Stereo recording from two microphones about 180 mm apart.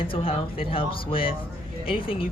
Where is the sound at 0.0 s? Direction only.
30° left (ahead or behind).